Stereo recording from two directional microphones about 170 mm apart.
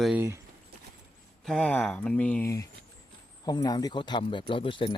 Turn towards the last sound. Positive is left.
turn(degrees=30)  # may be behind; listen again after turning